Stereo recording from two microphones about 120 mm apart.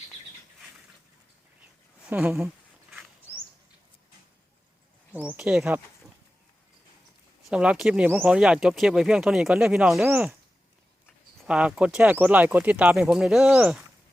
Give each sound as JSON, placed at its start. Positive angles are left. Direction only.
{"t": 2.0, "sound": "speech", "side_deg": -15}
{"t": 5.1, "sound": "speech", "side_deg": -10}
{"t": 7.4, "sound": "speech", "side_deg": -10}
{"t": 11.4, "sound": "speech", "side_deg": -10}